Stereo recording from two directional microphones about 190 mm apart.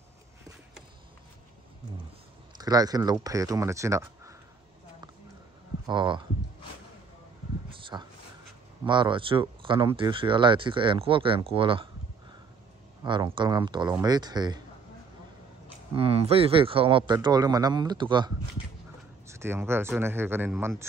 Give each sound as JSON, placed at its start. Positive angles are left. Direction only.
{"t": 2.5, "sound": "speech", "side_deg": -20}
{"t": 5.9, "sound": "speech", "side_deg": -25}
{"t": 7.8, "sound": "a sound", "side_deg": -25}
{"t": 8.8, "sound": "speech", "side_deg": -25}
{"t": 13.0, "sound": "speech", "side_deg": -25}
{"t": 15.9, "sound": "speech", "side_deg": -30}
{"t": 19.2, "sound": "speech", "side_deg": -15}